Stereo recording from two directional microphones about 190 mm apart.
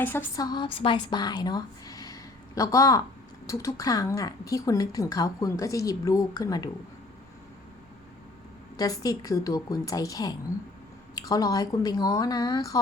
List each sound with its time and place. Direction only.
0.0 s speech: 10° left (ahead or behind)
0.4 s speech: 25° left (ahead or behind)
8.8 s speech: 20° left (ahead or behind)